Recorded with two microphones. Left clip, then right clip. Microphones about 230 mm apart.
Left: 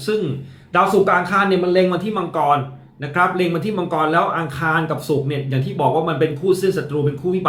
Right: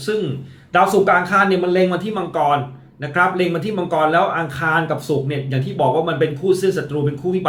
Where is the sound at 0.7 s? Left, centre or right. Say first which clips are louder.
Right 1 dB; centre.